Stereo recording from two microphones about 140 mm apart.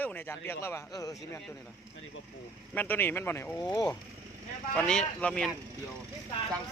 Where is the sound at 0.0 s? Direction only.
15° left (ahead or behind).